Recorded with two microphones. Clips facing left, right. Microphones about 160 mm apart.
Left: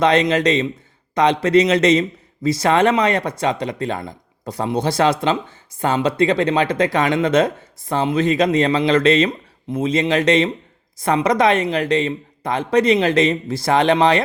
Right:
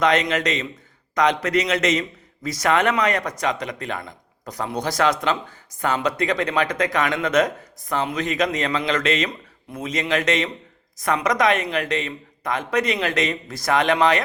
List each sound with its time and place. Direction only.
0.0 s a man's voice: 30° left (ahead or behind)